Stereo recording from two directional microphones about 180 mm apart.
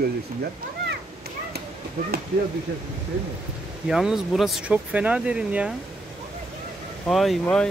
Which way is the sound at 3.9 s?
Centre (ahead or behind).